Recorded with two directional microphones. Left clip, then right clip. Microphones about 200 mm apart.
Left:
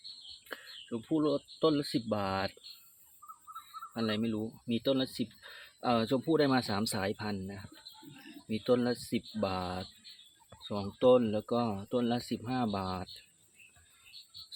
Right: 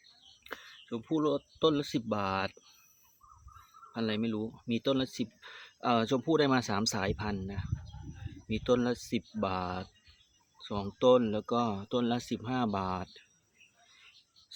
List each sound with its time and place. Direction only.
0.4 s speech: centre (ahead or behind)
3.9 s speech: 5° right (ahead or behind)